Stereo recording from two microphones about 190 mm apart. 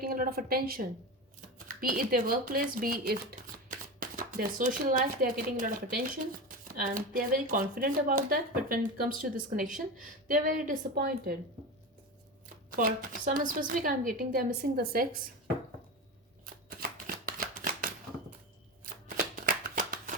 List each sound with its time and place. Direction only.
0.0 s speech: 50° right (ahead or behind)
12.7 s speech: 45° right (ahead or behind)
16.6 s shuffling cards: 50° right (ahead or behind)
19.0 s shuffling cards: 50° right (ahead or behind)